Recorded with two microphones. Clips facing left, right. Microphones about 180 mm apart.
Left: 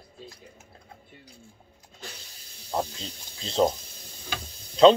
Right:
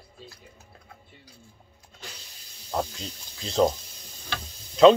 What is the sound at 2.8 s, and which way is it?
Speech, 25° left (ahead or behind).